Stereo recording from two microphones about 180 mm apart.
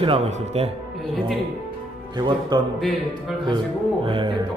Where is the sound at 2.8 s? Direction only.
Centre (ahead or behind).